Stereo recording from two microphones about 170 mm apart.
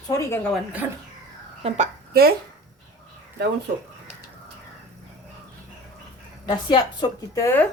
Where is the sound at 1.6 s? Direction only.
40° right (ahead or behind).